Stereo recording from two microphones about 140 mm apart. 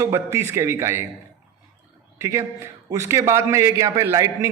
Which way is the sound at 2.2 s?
20° right (ahead or behind).